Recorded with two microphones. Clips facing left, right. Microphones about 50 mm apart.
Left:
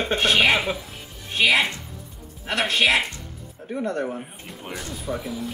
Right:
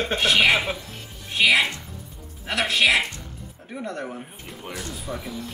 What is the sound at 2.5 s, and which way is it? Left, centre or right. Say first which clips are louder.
Speech: left 1 dB; centre.